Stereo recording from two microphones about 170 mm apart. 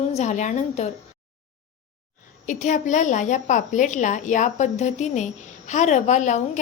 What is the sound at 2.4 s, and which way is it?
A woman's voice, 45° left (ahead or behind).